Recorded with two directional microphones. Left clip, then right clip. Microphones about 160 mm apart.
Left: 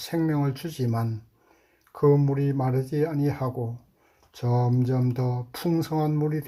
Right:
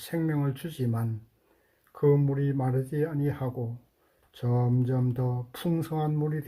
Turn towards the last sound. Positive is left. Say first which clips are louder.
# left 5 dB
turn(degrees=40)  # may be behind; listen again after turning